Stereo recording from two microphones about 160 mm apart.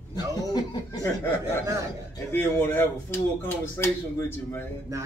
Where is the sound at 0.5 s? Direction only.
25° left (ahead or behind).